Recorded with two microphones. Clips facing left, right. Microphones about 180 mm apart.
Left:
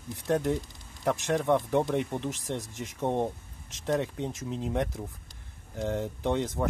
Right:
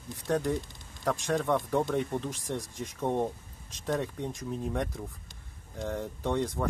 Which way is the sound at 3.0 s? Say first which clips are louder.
Left 1 dB; 20° left (ahead or behind).